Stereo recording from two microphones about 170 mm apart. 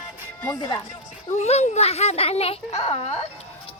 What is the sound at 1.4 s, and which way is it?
A child's voice, 40° left (ahead or behind).